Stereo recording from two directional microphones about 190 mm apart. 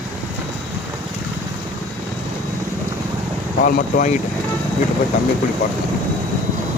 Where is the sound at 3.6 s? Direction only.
45° left (ahead or behind).